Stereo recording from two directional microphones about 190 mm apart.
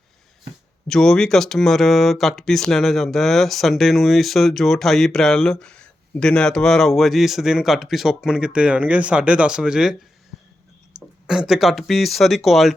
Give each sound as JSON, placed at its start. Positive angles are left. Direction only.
{"t": 0.9, "sound": "speech", "side_deg": 5}
{"t": 11.3, "sound": "speech", "side_deg": -5}